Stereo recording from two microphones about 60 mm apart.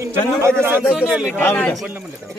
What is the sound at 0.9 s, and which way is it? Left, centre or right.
Speech, centre.